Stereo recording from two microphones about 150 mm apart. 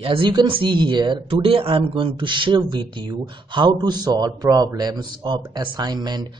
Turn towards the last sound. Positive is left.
turn(degrees=-30)  # may be behind; listen again after turning